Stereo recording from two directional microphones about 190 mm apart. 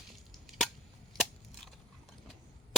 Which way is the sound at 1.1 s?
Centre (ahead or behind).